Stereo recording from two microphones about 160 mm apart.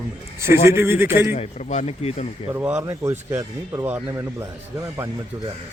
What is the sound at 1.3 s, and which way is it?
Speech, 45° left (ahead or behind).